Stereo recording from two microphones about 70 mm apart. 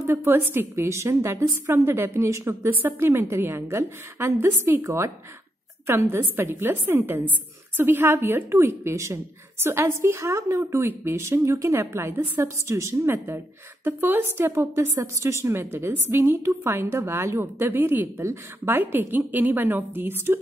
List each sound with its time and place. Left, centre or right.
0.1 s a woman's voice: right